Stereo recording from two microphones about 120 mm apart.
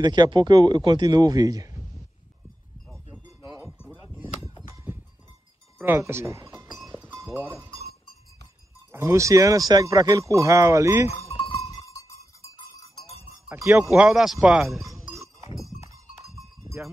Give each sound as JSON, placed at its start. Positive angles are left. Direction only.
{"t": 0.0, "sound": "speech", "side_deg": -35}
{"t": 4.9, "sound": "music", "side_deg": -15}
{"t": 5.8, "sound": "speech", "side_deg": -20}
{"t": 8.9, "sound": "speech", "side_deg": -25}
{"t": 11.1, "sound": "sheep", "side_deg": 55}
{"t": 11.9, "sound": "cowbell", "side_deg": 25}
{"t": 13.7, "sound": "speech", "side_deg": -20}
{"t": 13.9, "sound": "speech", "side_deg": -5}